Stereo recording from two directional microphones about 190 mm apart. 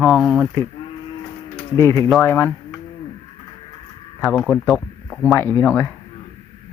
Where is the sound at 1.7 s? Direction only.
15° left (ahead or behind).